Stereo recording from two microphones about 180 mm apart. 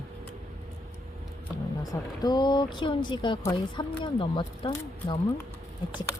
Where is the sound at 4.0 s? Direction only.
25° left (ahead or behind).